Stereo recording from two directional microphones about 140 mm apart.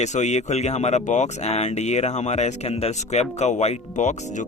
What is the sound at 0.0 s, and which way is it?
Speech, 55° left (ahead or behind).